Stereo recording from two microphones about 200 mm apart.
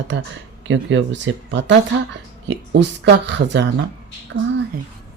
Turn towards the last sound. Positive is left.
turn(degrees=-60)  # may be behind; listen again after turning